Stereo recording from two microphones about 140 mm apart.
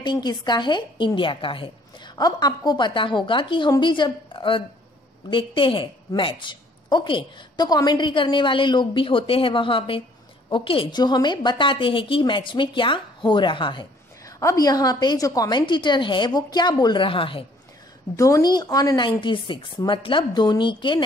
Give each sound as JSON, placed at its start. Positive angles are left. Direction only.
{"t": 0.0, "sound": "a woman's voice", "side_deg": 30}
{"t": 18.1, "sound": "a woman's voice", "side_deg": 25}